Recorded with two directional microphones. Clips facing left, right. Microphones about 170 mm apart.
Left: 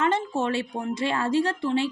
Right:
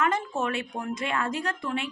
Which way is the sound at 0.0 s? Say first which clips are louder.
Left 3 dB; 30° left (ahead or behind).